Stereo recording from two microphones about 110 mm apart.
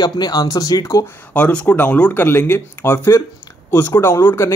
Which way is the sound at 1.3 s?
15° left (ahead or behind).